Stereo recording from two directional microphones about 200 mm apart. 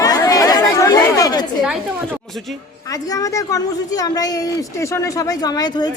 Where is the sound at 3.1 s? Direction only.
15° left (ahead or behind).